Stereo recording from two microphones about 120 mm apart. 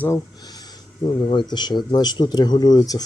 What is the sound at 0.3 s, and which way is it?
Speech, 35° left (ahead or behind).